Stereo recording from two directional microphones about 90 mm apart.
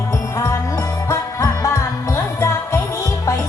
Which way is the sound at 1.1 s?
30° left (ahead or behind).